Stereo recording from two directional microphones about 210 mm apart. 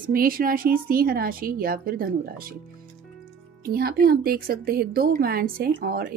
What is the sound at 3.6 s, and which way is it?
Speech, 45° right (ahead or behind).